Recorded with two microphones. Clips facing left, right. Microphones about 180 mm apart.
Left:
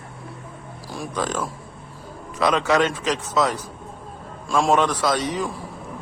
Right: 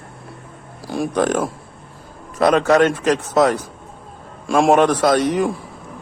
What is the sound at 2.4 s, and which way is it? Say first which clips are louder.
A man's voice: right 6 dB; 50° right (ahead or behind).